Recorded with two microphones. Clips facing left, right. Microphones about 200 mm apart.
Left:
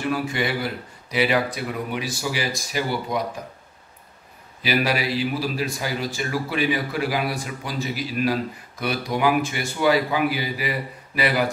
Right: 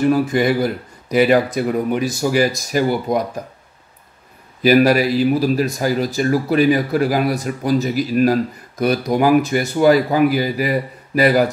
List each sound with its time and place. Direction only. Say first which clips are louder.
0.1 s a man's voice: right 9 dB; 45° right (ahead or behind)
4.6 s a man's voice: right 10 dB; 45° right (ahead or behind)